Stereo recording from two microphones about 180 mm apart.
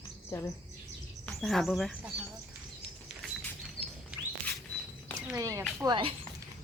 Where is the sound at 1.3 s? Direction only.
Centre (ahead or behind).